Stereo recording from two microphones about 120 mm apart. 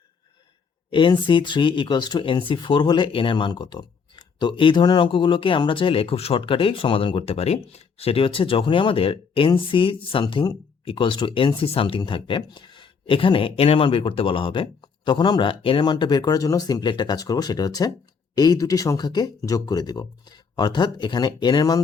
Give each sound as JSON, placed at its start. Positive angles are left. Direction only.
{"t": 0.9, "sound": "speech", "side_deg": 45}